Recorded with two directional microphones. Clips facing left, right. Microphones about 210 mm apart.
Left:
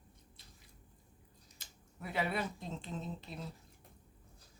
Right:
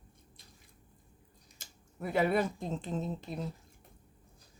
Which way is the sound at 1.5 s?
50° right (ahead or behind).